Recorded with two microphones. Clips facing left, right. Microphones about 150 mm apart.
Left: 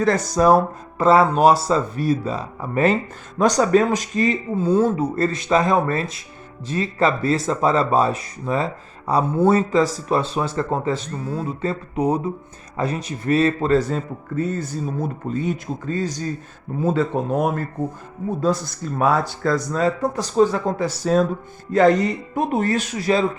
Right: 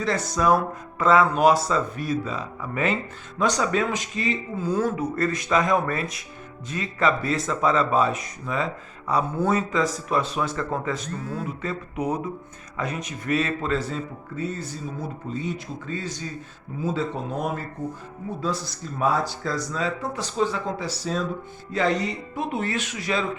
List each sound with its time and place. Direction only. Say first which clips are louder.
0.0 s speech: left 6 dB; 45° left (ahead or behind)
4.5 s speech: left 7 dB; 30° left (ahead or behind)
16.8 s speech: left 6 dB; 55° left (ahead or behind); by 23.2 s 35° left (ahead or behind)